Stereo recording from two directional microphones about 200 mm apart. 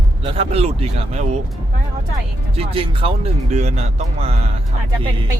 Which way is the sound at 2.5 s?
30° right (ahead or behind).